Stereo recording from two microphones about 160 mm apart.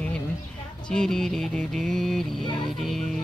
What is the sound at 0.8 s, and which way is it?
Music, 5° left (ahead or behind).